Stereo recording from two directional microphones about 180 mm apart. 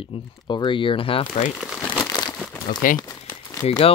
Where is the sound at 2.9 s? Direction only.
20° left (ahead or behind).